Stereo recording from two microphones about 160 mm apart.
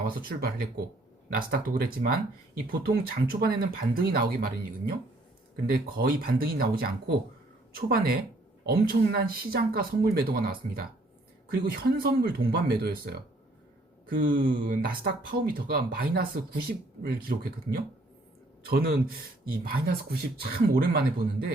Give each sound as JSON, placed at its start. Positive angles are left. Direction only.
{"t": 0.1, "sound": "speech", "side_deg": -65}
{"t": 5.7, "sound": "speech", "side_deg": -65}
{"t": 14.1, "sound": "speech", "side_deg": -60}
{"t": 18.7, "sound": "speech", "side_deg": -70}